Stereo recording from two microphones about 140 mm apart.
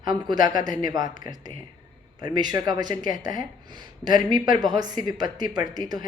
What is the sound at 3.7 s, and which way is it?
Speech, 30° right (ahead or behind).